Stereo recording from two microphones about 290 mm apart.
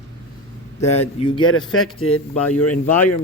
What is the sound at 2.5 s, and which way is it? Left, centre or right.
Speech, left.